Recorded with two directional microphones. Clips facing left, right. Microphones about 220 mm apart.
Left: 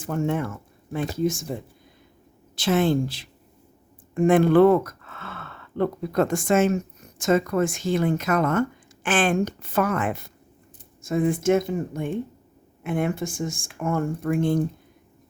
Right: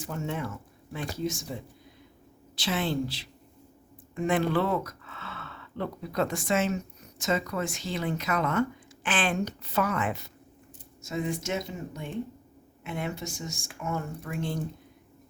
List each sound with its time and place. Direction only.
0.0 s a woman's voice: 55° left (ahead or behind)
2.6 s a woman's voice: 50° left (ahead or behind)